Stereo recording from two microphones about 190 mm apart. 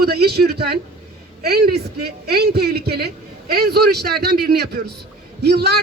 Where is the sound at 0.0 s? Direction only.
55° right (ahead or behind).